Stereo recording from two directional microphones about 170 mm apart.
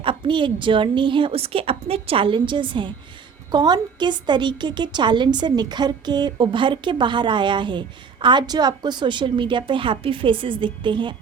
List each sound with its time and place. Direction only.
0.0 s a woman's voice: 30° right (ahead or behind)